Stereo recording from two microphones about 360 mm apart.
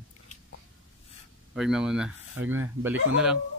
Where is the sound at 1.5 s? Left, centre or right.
Centre.